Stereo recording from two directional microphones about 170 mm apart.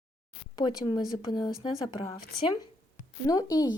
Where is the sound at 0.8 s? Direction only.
25° left (ahead or behind).